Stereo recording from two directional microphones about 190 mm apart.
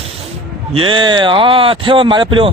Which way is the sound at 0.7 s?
25° right (ahead or behind).